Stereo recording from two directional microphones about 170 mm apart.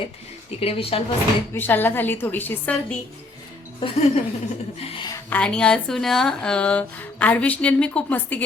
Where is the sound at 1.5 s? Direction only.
10° left (ahead or behind).